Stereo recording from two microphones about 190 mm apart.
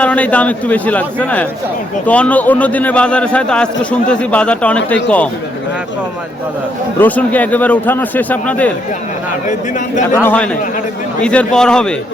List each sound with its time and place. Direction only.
0.0 s a man's voice: 5° left (ahead or behind)
7.0 s a man's voice: 10° left (ahead or behind)
9.5 s a man's voice: 40° left (ahead or behind)
10.2 s a man's voice: 5° left (ahead or behind)